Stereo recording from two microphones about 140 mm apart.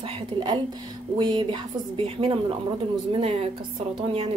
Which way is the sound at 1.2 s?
35° right (ahead or behind).